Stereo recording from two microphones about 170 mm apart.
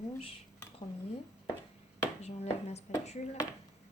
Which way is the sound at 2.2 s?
40° left (ahead or behind).